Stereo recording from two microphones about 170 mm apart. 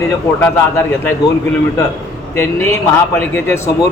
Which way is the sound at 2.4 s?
15° left (ahead or behind).